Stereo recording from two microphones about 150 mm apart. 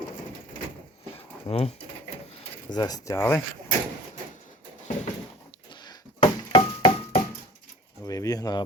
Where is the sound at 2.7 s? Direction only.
25° left (ahead or behind).